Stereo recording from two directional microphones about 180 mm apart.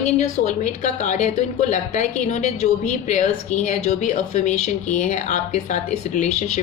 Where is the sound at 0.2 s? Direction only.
40° left (ahead or behind).